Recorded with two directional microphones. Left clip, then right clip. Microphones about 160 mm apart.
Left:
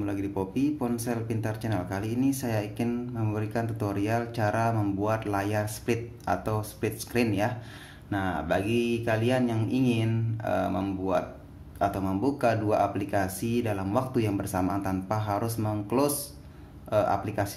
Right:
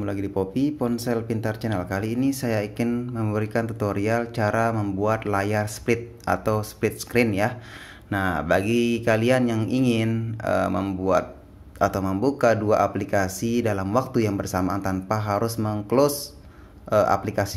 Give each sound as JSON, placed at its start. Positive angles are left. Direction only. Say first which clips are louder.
{"t": 0.0, "sound": "speech", "louder": "right 4 dB", "side_deg": -30}